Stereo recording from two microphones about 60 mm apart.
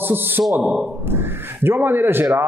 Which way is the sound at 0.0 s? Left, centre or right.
Right.